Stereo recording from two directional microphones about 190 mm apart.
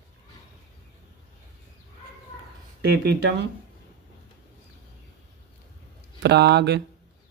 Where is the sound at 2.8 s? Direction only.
60° right (ahead or behind).